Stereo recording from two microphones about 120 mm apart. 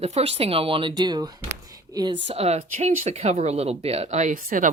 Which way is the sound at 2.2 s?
60° right (ahead or behind).